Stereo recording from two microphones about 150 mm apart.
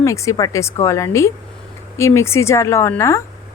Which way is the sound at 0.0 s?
20° left (ahead or behind).